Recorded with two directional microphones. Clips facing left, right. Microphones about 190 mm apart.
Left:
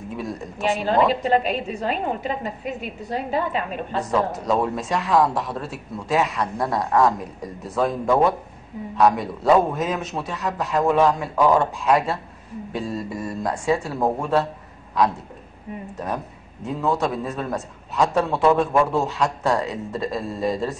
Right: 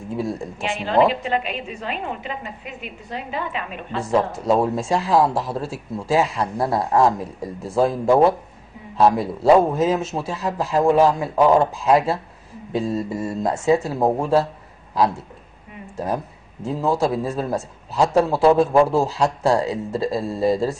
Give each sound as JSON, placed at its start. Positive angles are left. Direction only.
{"t": 0.6, "sound": "a woman's voice", "side_deg": 40}
{"t": 4.1, "sound": "a man's voice", "side_deg": -25}
{"t": 17.0, "sound": "a man's voice", "side_deg": -30}